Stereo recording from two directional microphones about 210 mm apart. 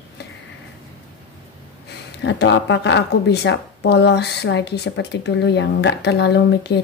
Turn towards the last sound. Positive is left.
turn(degrees=55)  # may be behind; listen again after turning